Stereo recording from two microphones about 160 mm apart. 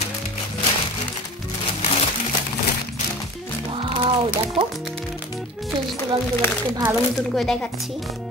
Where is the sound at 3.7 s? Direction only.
30° right (ahead or behind).